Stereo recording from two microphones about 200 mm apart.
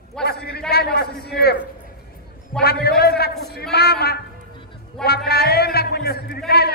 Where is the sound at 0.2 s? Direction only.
50° left (ahead or behind).